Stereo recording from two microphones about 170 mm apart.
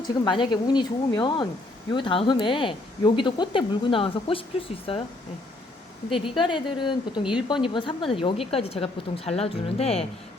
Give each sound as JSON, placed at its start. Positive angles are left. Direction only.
{"t": 0.1, "sound": "a woman's voice", "side_deg": 25}
{"t": 6.3, "sound": "a woman's voice", "side_deg": 30}